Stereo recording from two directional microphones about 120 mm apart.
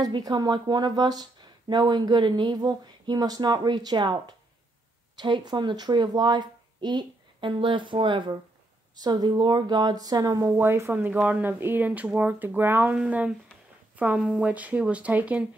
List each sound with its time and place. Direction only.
0.0 s speech: 35° right (ahead or behind)
10.6 s speech: 20° right (ahead or behind)